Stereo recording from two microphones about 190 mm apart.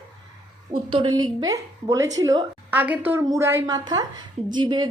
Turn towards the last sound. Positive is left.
turn(degrees=-25)  # may be behind; listen again after turning